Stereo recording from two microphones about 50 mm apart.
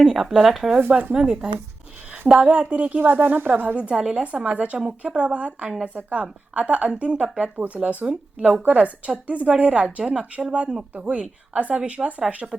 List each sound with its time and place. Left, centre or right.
0.0 s speech: centre
0.8 s a woman's voice: right
1.1 s speech: centre
3.0 s a woman's voice: right
3.8 s speech: right